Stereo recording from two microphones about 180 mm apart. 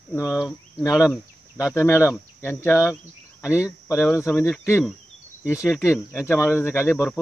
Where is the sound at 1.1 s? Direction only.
15° left (ahead or behind).